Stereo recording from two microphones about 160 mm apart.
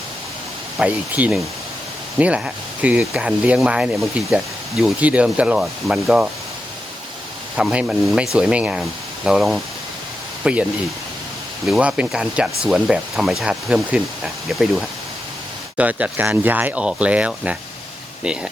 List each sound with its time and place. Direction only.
0.8 s speech: 10° right (ahead or behind)
7.5 s speech: 5° right (ahead or behind)